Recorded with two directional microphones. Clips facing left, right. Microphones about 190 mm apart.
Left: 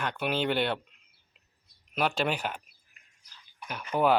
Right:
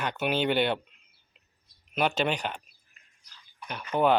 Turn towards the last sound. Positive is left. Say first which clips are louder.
# right 1 dB
turn(degrees=5)  # may be behind; listen again after turning